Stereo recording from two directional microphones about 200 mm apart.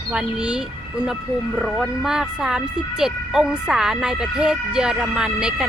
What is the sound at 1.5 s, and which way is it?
Speech, centre (ahead or behind).